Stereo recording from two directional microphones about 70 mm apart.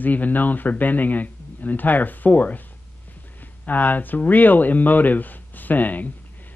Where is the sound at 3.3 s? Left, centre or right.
Left.